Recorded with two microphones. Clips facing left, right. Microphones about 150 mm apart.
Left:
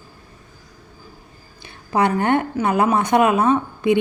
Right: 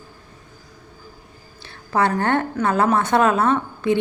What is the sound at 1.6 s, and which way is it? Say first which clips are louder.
A woman's voice: left 1 dB; 15° left (ahead or behind).